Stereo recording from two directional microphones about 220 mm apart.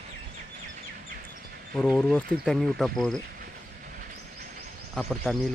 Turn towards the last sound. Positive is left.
turn(degrees=0)  # may be behind; listen again after turning